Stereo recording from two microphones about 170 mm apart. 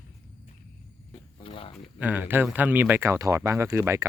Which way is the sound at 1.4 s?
30° left (ahead or behind).